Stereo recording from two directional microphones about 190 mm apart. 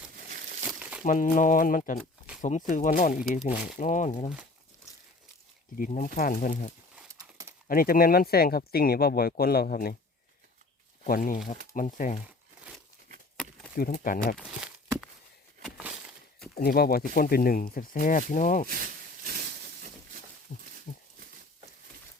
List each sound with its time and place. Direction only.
0.7 s crumpling: 5° right (ahead or behind)
1.0 s speech: 45° left (ahead or behind)
2.0 s a sound: 5° right (ahead or behind)
2.4 s speech: 40° left (ahead or behind)
5.7 s speech: 50° left (ahead or behind)
7.7 s speech: 50° left (ahead or behind)
11.0 s speech: 45° left (ahead or behind)
13.7 s speech: 50° left (ahead or behind)
14.3 s speech: centre (ahead or behind)
15.6 s a sound: 5° right (ahead or behind)
16.6 s speech: 50° left (ahead or behind)
18.7 s snake: 50° right (ahead or behind)
20.5 s a sound: 35° left (ahead or behind)